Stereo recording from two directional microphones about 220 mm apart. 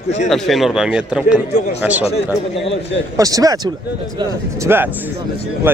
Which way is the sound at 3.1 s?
15° right (ahead or behind).